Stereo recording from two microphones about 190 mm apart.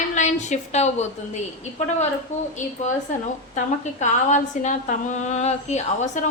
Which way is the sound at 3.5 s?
40° left (ahead or behind).